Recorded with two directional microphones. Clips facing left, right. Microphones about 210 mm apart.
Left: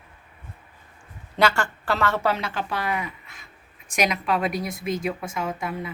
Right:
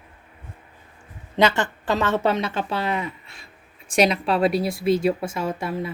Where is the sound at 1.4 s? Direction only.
20° right (ahead or behind).